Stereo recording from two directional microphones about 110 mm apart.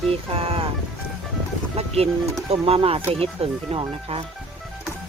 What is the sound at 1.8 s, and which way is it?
Speech, 65° right (ahead or behind).